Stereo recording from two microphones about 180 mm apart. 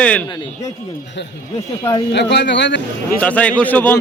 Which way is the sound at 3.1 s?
5° left (ahead or behind).